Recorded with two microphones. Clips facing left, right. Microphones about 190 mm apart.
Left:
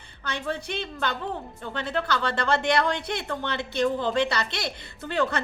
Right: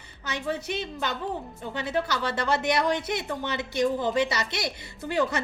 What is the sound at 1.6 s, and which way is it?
Speech, 10° right (ahead or behind).